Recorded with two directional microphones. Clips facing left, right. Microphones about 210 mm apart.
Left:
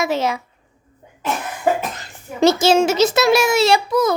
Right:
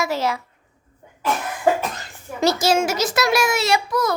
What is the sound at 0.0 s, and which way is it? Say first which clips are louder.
Speech: left 3 dB; 20° left (ahead or behind).